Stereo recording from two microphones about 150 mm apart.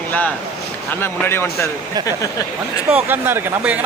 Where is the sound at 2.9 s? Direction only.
10° right (ahead or behind).